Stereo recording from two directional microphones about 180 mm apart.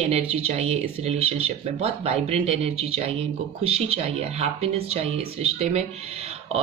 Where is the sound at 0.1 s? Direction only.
35° right (ahead or behind).